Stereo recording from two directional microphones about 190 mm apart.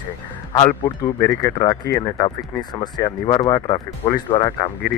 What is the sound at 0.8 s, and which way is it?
Speech, 15° left (ahead or behind).